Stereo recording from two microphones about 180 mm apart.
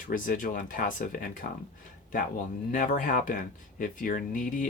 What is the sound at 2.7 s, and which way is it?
Speech, 45° left (ahead or behind).